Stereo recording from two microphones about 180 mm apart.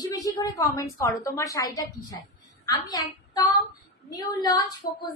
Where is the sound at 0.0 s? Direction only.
20° left (ahead or behind).